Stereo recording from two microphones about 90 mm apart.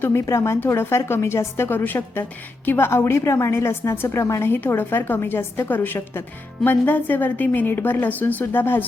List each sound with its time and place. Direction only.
0.1 s a woman's voice: 35° left (ahead or behind)